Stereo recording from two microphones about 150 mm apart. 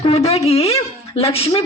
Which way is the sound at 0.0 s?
45° left (ahead or behind).